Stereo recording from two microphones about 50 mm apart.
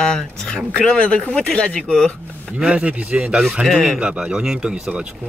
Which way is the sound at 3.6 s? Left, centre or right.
Centre.